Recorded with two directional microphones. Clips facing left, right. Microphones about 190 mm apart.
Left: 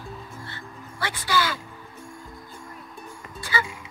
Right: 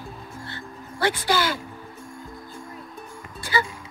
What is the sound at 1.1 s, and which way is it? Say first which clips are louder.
Speech: right 2 dB; 25° right (ahead or behind).